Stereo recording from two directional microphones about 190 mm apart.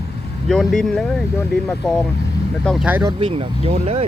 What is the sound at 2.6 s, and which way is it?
Speech, centre (ahead or behind).